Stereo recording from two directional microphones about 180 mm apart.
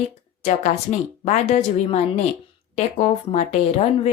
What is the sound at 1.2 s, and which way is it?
Speech, 40° left (ahead or behind).